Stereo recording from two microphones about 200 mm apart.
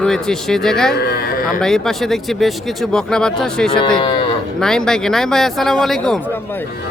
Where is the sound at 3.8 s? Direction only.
25° left (ahead or behind).